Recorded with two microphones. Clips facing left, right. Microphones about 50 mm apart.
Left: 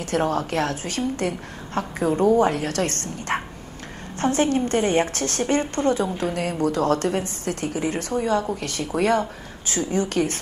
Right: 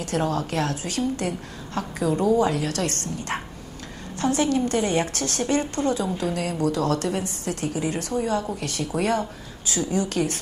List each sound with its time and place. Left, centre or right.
0.0 s a woman's voice: left